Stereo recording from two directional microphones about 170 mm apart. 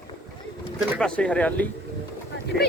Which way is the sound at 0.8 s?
5° left (ahead or behind).